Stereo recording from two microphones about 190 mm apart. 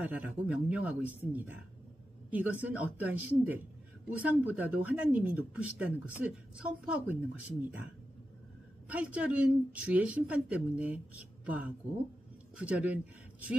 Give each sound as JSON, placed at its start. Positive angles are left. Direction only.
{"t": 0.0, "sound": "speech", "side_deg": -5}
{"t": 8.9, "sound": "speech", "side_deg": -5}